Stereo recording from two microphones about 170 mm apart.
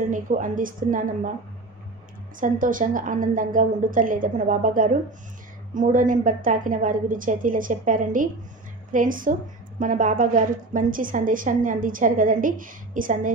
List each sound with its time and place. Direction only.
0.1 s a woman's voice: 50° right (ahead or behind)
2.4 s a woman's voice: 50° right (ahead or behind)